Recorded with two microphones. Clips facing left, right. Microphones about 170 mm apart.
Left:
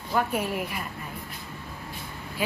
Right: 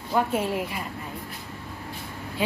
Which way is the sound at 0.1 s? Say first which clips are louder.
Right 2 dB; 25° right (ahead or behind).